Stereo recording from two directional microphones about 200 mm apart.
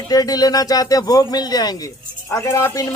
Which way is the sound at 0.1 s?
20° left (ahead or behind).